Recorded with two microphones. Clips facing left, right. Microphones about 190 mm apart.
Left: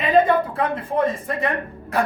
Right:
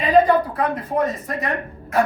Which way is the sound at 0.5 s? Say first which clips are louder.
Even; 30° left (ahead or behind).